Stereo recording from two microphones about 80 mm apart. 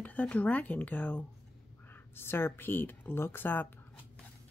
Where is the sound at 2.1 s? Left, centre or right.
Left.